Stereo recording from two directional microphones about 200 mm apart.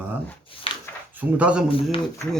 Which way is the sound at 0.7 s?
25° left (ahead or behind).